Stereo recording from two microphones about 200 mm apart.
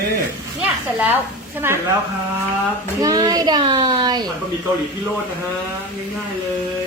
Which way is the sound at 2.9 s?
20° right (ahead or behind).